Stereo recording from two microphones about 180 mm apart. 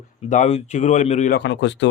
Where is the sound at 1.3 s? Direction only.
80° left.